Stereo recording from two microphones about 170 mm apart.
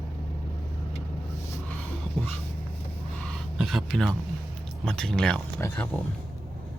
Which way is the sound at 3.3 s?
Centre (ahead or behind).